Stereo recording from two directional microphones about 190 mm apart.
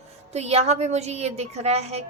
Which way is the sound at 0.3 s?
35° right (ahead or behind).